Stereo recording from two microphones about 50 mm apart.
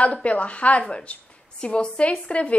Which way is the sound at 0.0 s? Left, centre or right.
Left.